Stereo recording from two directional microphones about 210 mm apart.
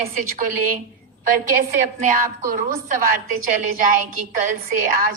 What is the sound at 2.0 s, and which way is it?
A woman's voice, 40° right (ahead or behind).